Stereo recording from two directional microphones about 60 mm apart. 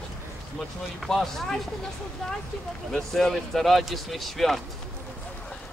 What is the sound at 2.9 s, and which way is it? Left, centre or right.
Speech, centre.